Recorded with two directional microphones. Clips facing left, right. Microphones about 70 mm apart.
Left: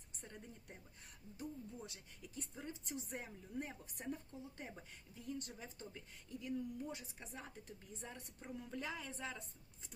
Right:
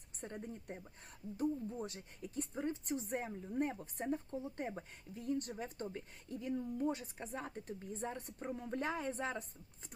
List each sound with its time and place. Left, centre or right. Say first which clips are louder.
0.3 s a woman's voice: right 9 dB; right